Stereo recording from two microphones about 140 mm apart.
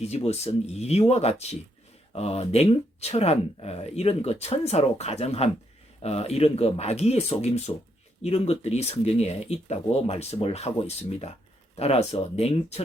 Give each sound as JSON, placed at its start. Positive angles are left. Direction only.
{"t": 0.3, "sound": "speech", "side_deg": 50}